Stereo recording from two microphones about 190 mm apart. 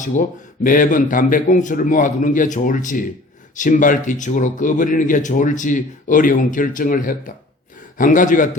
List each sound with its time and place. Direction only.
0.0 s speech: 40° left (ahead or behind)